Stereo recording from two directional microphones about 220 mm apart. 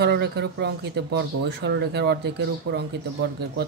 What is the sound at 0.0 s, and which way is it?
Speech, 50° right (ahead or behind).